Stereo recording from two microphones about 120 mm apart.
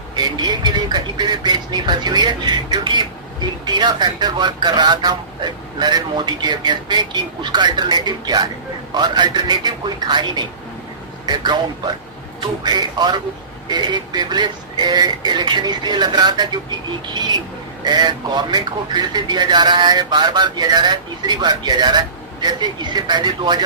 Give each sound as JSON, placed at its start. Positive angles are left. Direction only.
{"t": 0.2, "sound": "a man's voice", "side_deg": -35}